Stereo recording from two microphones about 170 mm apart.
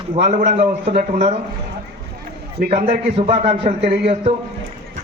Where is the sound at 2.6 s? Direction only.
40° right (ahead or behind).